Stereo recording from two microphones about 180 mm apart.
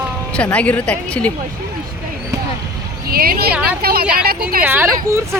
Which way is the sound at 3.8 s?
55° right (ahead or behind).